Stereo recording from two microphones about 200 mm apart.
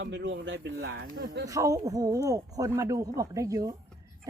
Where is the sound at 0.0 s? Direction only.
60° right (ahead or behind).